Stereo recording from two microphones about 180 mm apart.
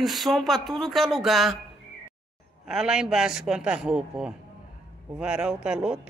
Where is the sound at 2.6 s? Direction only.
5° right (ahead or behind).